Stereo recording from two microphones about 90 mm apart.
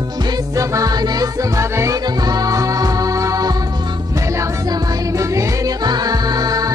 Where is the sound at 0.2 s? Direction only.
45° right (ahead or behind).